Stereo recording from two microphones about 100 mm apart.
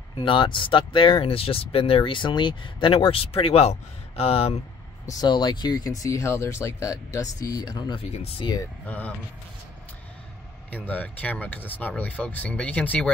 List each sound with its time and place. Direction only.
0.2 s speech: 60° left (ahead or behind); by 4.6 s 80° left
5.0 s speech: 45° left (ahead or behind)
8.1 s speech: 85° left
8.8 s speech: 15° left (ahead or behind)
10.7 s speech: 15° left (ahead or behind)